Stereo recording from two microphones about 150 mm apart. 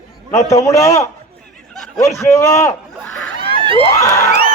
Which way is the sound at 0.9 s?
20° left (ahead or behind).